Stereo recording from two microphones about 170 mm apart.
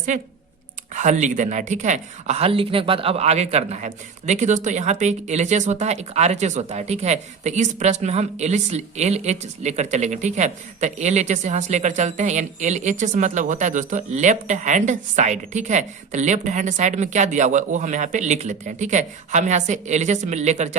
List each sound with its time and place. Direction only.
0.1 s speech: 50° right (ahead or behind)